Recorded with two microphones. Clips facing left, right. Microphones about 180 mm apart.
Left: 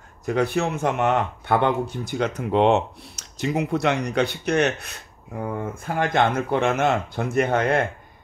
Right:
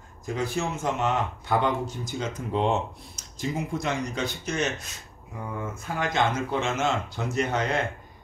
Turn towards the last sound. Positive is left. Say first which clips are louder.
# left 6 dB
turn(degrees=55)  # may be behind; listen again after turning